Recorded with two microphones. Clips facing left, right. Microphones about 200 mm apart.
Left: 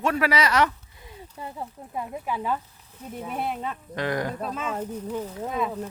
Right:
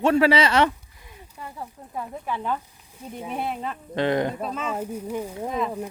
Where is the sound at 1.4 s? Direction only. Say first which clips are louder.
Left 2 dB; 25° left (ahead or behind).